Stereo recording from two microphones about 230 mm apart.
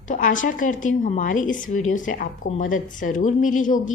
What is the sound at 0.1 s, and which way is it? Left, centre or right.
A woman's voice, left.